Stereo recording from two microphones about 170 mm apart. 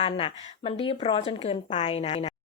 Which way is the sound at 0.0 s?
35° left (ahead or behind).